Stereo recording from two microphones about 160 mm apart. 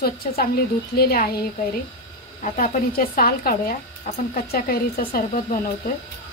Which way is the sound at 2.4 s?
55° left (ahead or behind).